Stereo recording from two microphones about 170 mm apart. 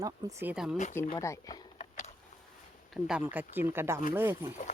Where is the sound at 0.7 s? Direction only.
45° left (ahead or behind).